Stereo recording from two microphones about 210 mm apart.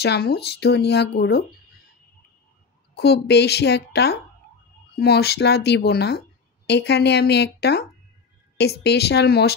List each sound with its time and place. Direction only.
0.0 s speech: 50° left (ahead or behind)
3.0 s speech: 50° left (ahead or behind)